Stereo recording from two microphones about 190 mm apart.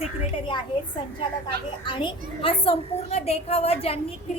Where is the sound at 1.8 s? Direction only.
25° left (ahead or behind).